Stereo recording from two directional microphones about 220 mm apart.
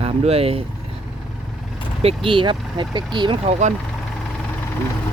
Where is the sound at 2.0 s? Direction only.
25° right (ahead or behind).